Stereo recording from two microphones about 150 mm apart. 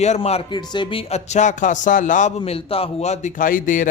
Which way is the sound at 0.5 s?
30° left (ahead or behind).